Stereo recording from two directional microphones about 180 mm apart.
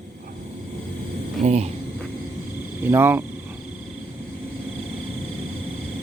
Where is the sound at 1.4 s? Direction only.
40° right (ahead or behind).